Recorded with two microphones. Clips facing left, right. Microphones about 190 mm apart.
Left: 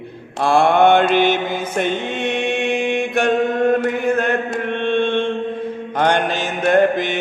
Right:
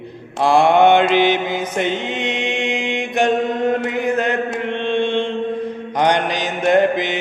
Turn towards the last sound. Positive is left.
turn(degrees=-15)  # may be behind; listen again after turning